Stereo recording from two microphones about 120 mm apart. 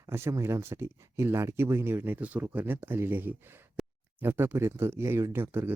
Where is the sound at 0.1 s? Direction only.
25° right (ahead or behind).